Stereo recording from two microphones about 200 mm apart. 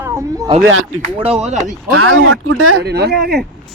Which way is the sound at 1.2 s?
30° right (ahead or behind).